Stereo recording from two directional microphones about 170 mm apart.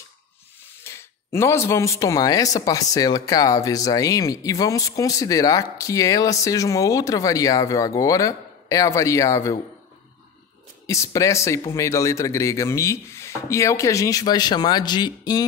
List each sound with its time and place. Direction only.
0.8 s speech: 15° left (ahead or behind)
10.9 s speech: 20° left (ahead or behind)